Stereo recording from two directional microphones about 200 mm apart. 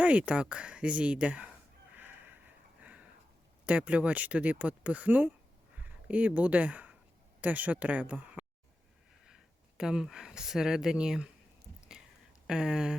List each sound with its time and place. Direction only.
0.0 s speech: 5° right (ahead or behind)
2.8 s a sound: 5° right (ahead or behind)
3.7 s speech: 5° right (ahead or behind)
12.5 s speech: 5° right (ahead or behind)